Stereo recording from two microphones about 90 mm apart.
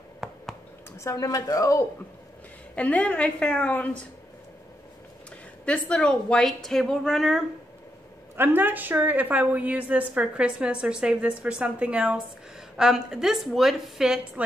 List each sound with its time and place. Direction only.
0.2 s a sound: 5° right (ahead or behind)
0.9 s a woman's voice: 35° left (ahead or behind)
2.7 s a woman's voice: 15° left (ahead or behind)
5.7 s a woman's voice: 10° left (ahead or behind)
8.4 s a woman's voice: 20° right (ahead or behind); by 14.2 s 5° right (ahead or behind)